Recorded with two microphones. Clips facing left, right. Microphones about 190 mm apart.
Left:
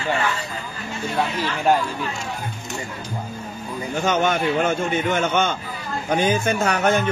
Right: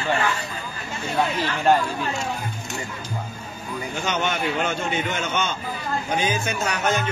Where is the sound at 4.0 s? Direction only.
50° left (ahead or behind).